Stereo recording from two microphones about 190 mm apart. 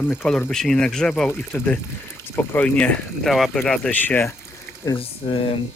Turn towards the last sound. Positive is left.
turn(degrees=30)  # may be behind; listen again after turning